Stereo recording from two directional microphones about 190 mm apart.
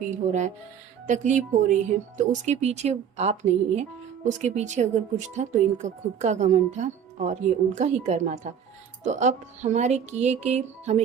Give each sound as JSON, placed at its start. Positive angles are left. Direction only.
{"t": 0.3, "sound": "speech", "side_deg": -40}